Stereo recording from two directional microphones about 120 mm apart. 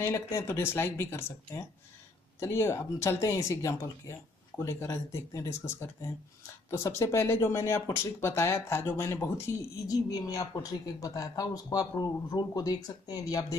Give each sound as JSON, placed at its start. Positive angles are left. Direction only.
{"t": 0.0, "sound": "speech", "side_deg": 20}
{"t": 9.8, "sound": "speech", "side_deg": 30}